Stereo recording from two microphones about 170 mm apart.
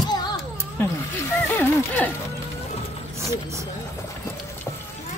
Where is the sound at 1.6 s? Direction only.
10° left (ahead or behind).